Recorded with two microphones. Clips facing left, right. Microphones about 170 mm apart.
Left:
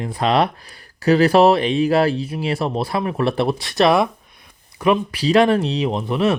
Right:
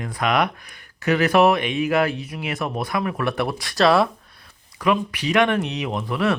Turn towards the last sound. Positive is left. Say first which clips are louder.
# left 4 dB
turn(degrees=25)  # may be behind; listen again after turning